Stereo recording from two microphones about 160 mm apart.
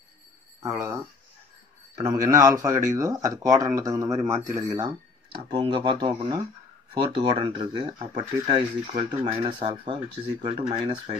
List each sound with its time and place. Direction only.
0.6 s speech: 20° right (ahead or behind)
2.0 s speech: 20° right (ahead or behind)